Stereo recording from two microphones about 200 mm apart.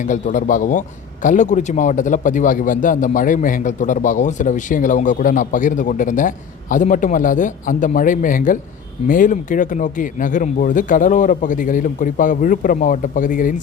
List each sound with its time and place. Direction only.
0.0 s a man's voice: 40° left (ahead or behind)